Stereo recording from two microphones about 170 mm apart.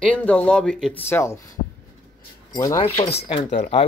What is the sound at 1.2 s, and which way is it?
Speech, 15° left (ahead or behind).